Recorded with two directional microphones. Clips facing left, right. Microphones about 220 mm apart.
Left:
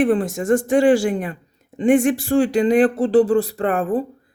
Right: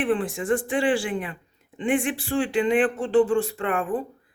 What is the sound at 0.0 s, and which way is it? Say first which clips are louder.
Speech: left 6 dB; 40° left (ahead or behind).